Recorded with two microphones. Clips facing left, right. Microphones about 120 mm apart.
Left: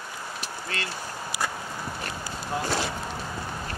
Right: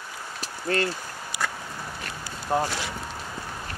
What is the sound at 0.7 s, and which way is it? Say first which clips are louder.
Speech: right 10 dB; 45° right (ahead or behind).